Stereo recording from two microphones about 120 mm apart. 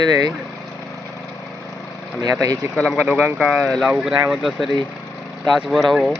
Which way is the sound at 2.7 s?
5° left (ahead or behind).